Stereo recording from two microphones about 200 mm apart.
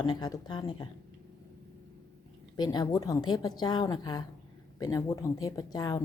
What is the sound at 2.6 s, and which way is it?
A woman's voice, 20° left (ahead or behind).